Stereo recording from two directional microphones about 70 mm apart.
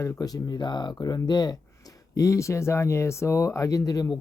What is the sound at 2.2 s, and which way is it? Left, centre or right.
Speech, left.